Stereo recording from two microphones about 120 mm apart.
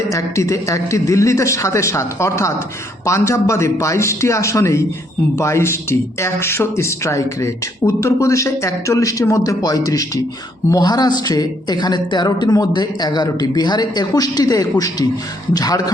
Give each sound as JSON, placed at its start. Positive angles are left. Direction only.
{"t": 0.1, "sound": "a man's voice", "side_deg": 25}